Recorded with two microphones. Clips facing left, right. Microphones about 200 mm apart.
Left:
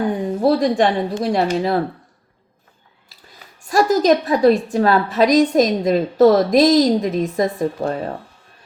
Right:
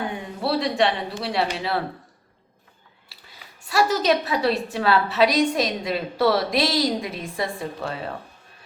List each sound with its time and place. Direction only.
0.4 s a woman's voice: 45° left (ahead or behind)
3.1 s a woman's voice: 45° left (ahead or behind)